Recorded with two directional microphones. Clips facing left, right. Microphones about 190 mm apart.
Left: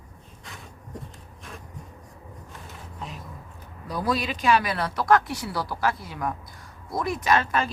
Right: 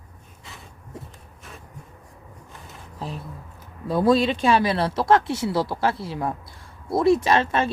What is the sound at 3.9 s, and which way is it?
Speech, 25° right (ahead or behind).